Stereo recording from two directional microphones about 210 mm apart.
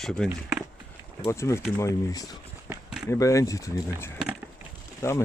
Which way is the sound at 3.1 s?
15° left (ahead or behind).